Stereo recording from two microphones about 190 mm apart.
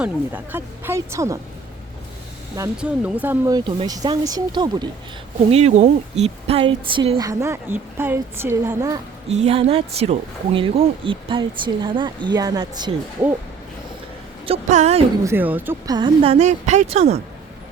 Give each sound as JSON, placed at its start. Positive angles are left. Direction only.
{"t": 0.0, "sound": "a woman's voice", "side_deg": -10}
{"t": 2.8, "sound": "speech", "side_deg": -10}
{"t": 5.5, "sound": "a woman's voice", "side_deg": -35}
{"t": 7.3, "sound": "a woman's voice", "side_deg": -15}
{"t": 9.3, "sound": "speech", "side_deg": -35}
{"t": 14.4, "sound": "a woman's voice", "side_deg": -35}
{"t": 15.2, "sound": "a woman's voice", "side_deg": -10}
{"t": 16.0, "sound": "a woman's voice", "side_deg": -25}